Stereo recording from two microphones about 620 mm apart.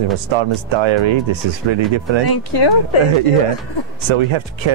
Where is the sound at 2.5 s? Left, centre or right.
Left.